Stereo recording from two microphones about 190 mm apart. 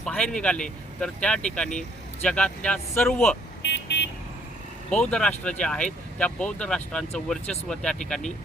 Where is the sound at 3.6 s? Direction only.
65° left (ahead or behind).